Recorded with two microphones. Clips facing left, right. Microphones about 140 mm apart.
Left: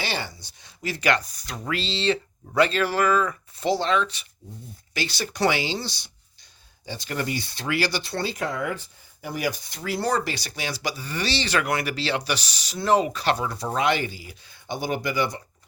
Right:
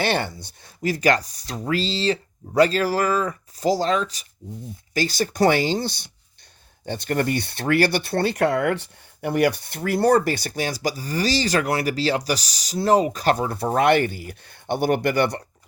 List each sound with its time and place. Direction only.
0.0 s speech: 55° right (ahead or behind)